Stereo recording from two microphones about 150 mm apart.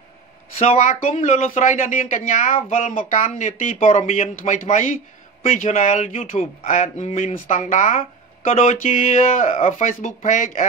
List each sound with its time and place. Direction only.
0.6 s speech: 50° left (ahead or behind)